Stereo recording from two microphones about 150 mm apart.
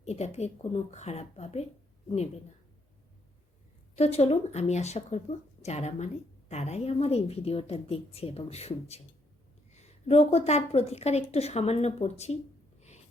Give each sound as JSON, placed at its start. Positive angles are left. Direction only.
{"t": 0.0, "sound": "a woman's voice", "side_deg": 45}
{"t": 3.9, "sound": "a woman's voice", "side_deg": 45}